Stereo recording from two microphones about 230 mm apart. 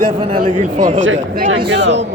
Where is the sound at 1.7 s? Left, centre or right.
Right.